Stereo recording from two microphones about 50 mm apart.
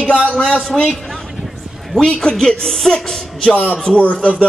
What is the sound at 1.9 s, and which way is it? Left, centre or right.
Speech, centre.